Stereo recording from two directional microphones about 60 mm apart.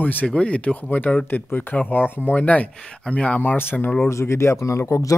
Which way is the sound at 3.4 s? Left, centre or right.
Left.